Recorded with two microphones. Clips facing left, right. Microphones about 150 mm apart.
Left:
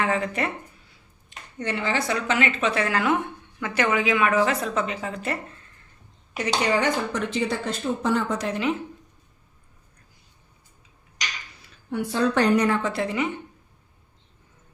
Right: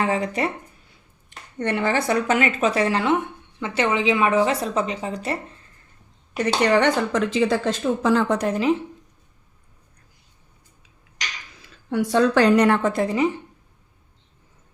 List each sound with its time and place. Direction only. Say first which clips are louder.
0.0 s speech: right 2 dB; 35° right (ahead or behind)
1.5 s a woman's voice: right 4 dB; 55° right (ahead or behind); by 5.5 s 35° right (ahead or behind)
6.3 s speech: right 5 dB; 60° right (ahead or behind); by 8.4 s 90° right
8.4 s speech: right 5 dB; 40° right (ahead or behind)
11.9 s a woman's voice: right 5 dB; 85° right; by 13.4 s 35° right (ahead or behind)